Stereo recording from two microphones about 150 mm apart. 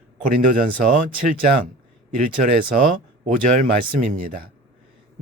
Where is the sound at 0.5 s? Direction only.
65° right (ahead or behind).